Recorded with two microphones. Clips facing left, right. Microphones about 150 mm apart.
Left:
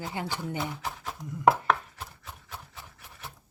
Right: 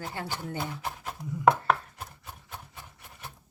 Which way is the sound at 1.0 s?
5° right (ahead or behind).